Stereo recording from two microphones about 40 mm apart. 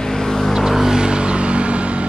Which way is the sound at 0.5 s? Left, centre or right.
Centre.